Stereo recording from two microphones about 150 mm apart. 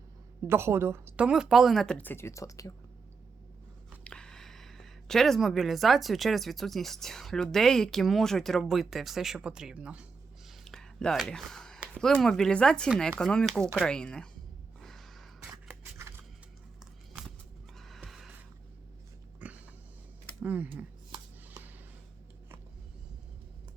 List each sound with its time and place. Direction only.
0.4 s speech: 15° right (ahead or behind); by 2.7 s 20° left (ahead or behind)
4.0 s speech: 5° left (ahead or behind)
10.6 s whispering: 5° left (ahead or behind)
11.9 s speech: 5° left (ahead or behind)
14.8 s a sound: centre (ahead or behind)
15.4 s scissors: 15° right (ahead or behind)
17.7 s music: centre (ahead or behind)
19.4 s a sound: 10° right (ahead or behind)
20.4 s speech: 10° right (ahead or behind)